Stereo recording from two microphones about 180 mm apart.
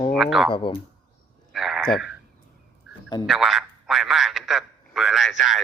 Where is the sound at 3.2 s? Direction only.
Centre (ahead or behind).